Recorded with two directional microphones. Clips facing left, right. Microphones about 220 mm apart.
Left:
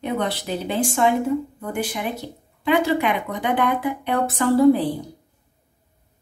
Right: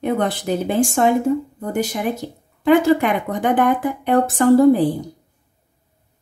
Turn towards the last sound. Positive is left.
turn(degrees=-45)  # may be behind; listen again after turning